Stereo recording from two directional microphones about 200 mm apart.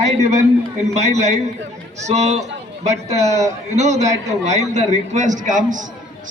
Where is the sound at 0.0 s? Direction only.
35° right (ahead or behind).